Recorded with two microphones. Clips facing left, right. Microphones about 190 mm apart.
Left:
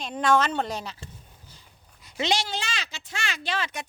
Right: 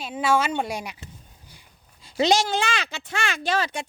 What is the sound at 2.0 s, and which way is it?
Speech, 40° right (ahead or behind).